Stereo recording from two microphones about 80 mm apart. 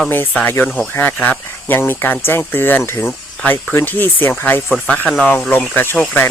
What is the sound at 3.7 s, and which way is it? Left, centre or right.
Speech, left.